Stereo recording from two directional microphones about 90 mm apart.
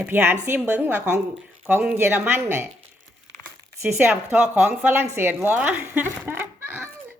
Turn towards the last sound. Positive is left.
turn(degrees=-25)  # may be behind; listen again after turning